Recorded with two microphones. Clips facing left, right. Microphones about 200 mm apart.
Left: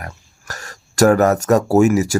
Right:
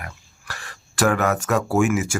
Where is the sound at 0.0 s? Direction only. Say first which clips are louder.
Left 4 dB; 40° left (ahead or behind).